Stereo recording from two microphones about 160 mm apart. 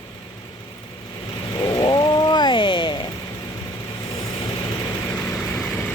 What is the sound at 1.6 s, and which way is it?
Chainsaw, 25° left (ahead or behind).